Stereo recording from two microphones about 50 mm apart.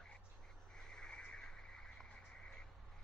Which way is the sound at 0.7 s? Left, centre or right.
Centre.